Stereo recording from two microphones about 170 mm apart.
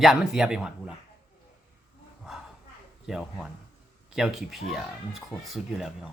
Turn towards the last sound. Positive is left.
turn(degrees=0)  # may be behind; listen again after turning